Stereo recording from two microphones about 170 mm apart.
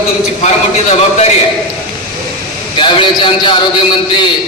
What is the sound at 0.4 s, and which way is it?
Speech, 40° left (ahead or behind).